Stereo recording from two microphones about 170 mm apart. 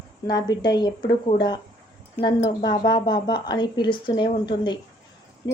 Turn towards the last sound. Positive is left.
turn(degrees=25)  # may be behind; listen again after turning